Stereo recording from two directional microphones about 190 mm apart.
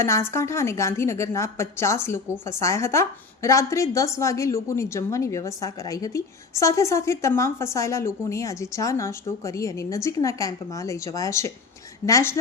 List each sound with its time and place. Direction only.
0.0 s a woman's voice: 15° left (ahead or behind)